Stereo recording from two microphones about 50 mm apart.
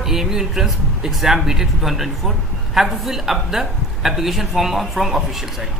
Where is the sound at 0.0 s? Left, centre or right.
Centre.